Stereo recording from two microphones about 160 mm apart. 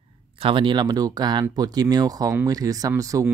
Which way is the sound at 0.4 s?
30° right (ahead or behind).